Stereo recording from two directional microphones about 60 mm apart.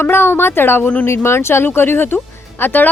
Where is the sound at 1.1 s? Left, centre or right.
Left.